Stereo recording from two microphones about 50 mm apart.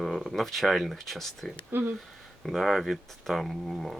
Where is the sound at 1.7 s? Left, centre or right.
Right.